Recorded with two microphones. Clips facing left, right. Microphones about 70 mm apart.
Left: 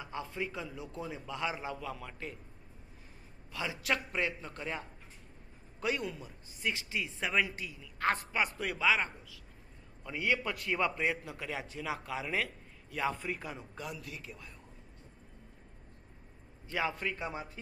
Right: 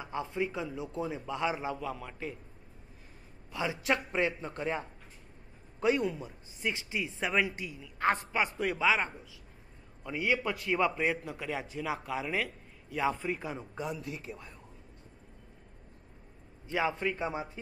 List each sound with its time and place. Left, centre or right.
0.0 s a man's voice: right
3.5 s a man's voice: right
13.1 s a man's voice: centre
13.6 s speech: centre
14.0 s a man's voice: right
16.6 s speech: centre